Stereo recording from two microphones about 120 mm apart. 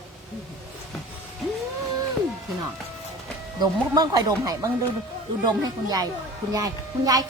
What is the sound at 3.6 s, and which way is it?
A woman's voice, 30° right (ahead or behind).